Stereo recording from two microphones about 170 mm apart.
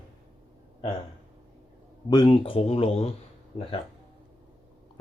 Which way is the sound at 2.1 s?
30° left (ahead or behind).